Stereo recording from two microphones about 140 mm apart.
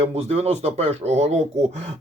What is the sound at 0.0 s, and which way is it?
Speech, 50° right (ahead or behind).